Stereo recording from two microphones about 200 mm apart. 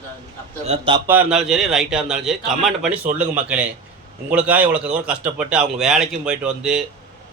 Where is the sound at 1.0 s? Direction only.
5° right (ahead or behind).